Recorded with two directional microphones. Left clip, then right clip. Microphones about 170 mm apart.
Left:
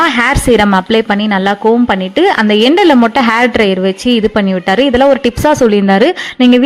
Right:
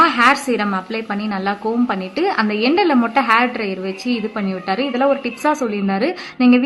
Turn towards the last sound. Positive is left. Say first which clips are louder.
# left 6 dB
turn(degrees=45)  # may be behind; listen again after turning